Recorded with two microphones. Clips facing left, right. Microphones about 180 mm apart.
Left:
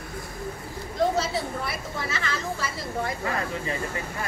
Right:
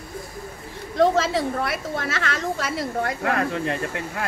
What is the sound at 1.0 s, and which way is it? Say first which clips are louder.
A woman's voice: right 6 dB; 90° right.